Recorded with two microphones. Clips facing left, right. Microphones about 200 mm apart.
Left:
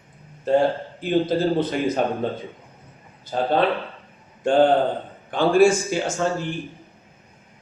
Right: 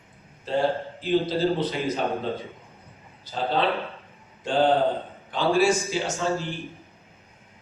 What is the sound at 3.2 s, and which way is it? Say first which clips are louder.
A man's voice: left 4 dB; 50° left (ahead or behind).